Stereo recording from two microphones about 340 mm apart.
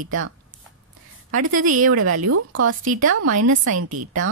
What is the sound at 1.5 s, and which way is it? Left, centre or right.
Speech, right.